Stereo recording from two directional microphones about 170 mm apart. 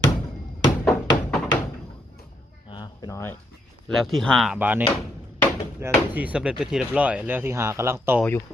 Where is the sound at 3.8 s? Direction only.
Centre (ahead or behind).